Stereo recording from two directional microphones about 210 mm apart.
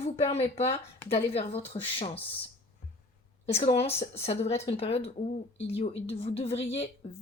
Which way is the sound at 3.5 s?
30° left (ahead or behind).